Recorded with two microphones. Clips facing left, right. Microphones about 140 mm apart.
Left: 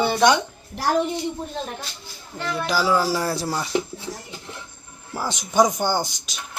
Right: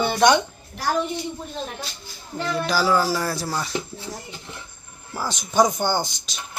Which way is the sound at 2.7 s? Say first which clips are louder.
Even; 20° left (ahead or behind).